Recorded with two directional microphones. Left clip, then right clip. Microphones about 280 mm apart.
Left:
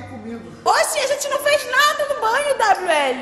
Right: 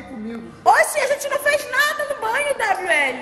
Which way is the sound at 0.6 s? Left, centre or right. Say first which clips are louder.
Right 2 dB; centre.